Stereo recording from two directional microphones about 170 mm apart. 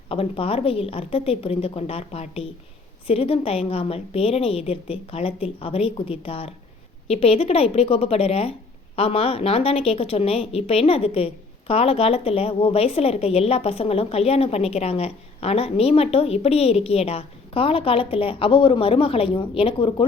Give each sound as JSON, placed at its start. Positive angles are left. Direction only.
{"t": 0.1, "sound": "a woman's voice", "side_deg": 35}